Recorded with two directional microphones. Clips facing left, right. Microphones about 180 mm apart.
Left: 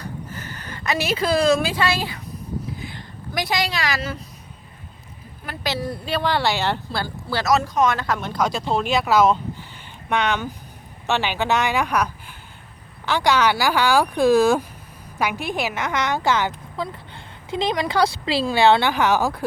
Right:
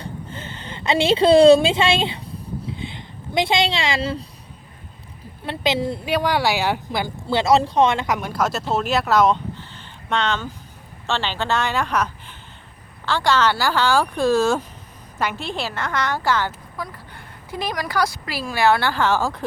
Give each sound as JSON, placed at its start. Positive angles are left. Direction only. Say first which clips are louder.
{"t": 0.0, "sound": "a sound", "louder": "even", "side_deg": -25}
{"t": 5.5, "sound": "speech", "louder": "right 5 dB", "side_deg": -25}
{"t": 8.3, "sound": "speech", "louder": "left 2 dB", "side_deg": -5}
{"t": 10.1, "sound": "a woman's voice", "louder": "left 1 dB", "side_deg": 15}